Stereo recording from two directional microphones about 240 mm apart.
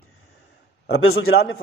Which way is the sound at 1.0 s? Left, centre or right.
Left.